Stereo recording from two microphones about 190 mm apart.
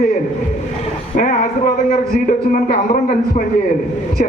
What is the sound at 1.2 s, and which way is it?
A man's voice, 45° left (ahead or behind).